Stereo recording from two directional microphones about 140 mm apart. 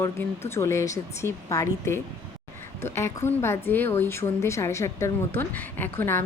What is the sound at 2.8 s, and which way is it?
Speech, 20° left (ahead or behind).